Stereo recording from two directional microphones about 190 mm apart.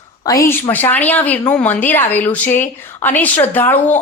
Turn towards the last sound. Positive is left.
turn(degrees=10)  # may be behind; listen again after turning